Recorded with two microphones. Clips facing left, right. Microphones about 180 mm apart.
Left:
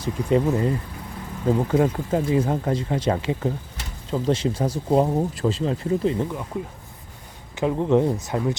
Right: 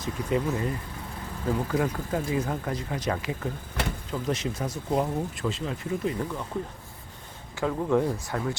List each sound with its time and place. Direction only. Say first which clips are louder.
0.0 s speech: left 6 dB; 30° left (ahead or behind)
3.8 s insect: right 9 dB; 60° right (ahead or behind)
4.1 s speech: left 10 dB; 30° left (ahead or behind)
7.5 s speech: left 5 dB; 20° left (ahead or behind)